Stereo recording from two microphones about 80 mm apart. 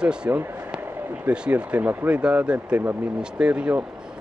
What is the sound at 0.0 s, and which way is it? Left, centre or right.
Speech, centre.